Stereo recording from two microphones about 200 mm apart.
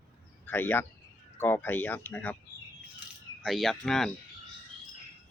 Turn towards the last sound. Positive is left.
turn(degrees=0)  # may be behind; listen again after turning